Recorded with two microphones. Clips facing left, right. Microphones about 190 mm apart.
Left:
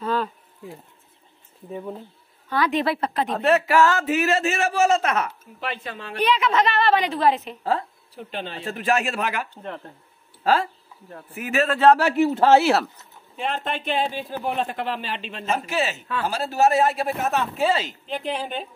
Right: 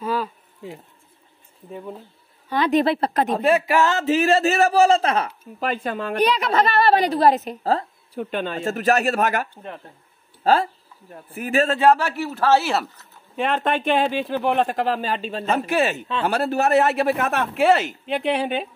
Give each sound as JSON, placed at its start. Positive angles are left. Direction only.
{"t": 0.0, "sound": "insect", "side_deg": -10}
{"t": 1.7, "sound": "speech", "side_deg": 0}
{"t": 2.8, "sound": "speech", "side_deg": -30}
{"t": 3.3, "sound": "speech", "side_deg": -10}
{"t": 5.6, "sound": "a woman's voice", "side_deg": -50}
{"t": 8.1, "sound": "speech", "side_deg": -55}
{"t": 10.4, "sound": "a woman's voice", "side_deg": -30}
{"t": 12.0, "sound": "speech", "side_deg": 20}
{"t": 13.4, "sound": "speech", "side_deg": -55}
{"t": 14.0, "sound": "speech", "side_deg": -75}
{"t": 14.8, "sound": "a woman's voice", "side_deg": -40}
{"t": 15.5, "sound": "speech", "side_deg": -55}